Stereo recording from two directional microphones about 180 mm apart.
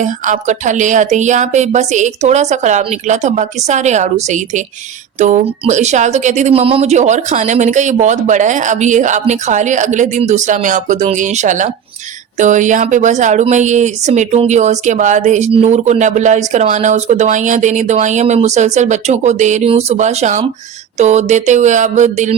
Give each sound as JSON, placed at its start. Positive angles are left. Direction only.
{"t": 0.0, "sound": "speech", "side_deg": -45}